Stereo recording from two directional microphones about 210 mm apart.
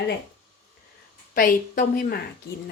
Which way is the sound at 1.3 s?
40° left (ahead or behind).